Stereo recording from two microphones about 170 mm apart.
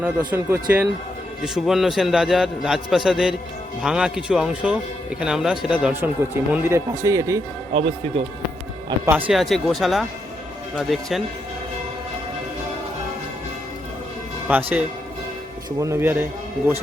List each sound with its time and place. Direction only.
0.0 s a man's voice: 10° right (ahead or behind)
7.7 s speech: 35° right (ahead or behind)
9.0 s a man's voice: 10° right (ahead or behind)
14.5 s speech: 10° right (ahead or behind)
15.8 s speech: 15° right (ahead or behind)